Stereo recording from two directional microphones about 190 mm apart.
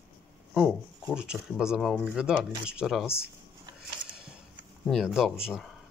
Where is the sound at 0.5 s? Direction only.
5° right (ahead or behind).